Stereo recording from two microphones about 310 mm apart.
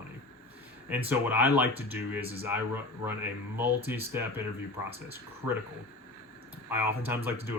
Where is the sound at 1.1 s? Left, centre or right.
Centre.